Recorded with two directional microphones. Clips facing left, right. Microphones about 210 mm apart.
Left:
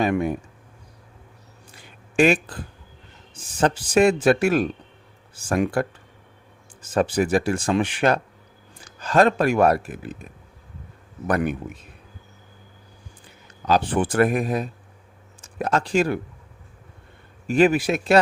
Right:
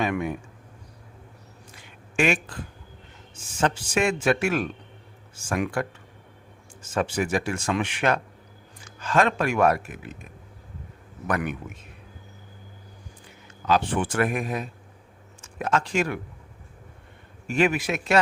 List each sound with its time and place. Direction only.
0.0 s speech: 35° left (ahead or behind)
1.7 s a sound: 35° left (ahead or behind)
3.3 s speech: 35° left (ahead or behind)
11.3 s speech: 35° left (ahead or behind)
13.7 s speech: 35° left (ahead or behind)
17.5 s speech: 35° left (ahead or behind)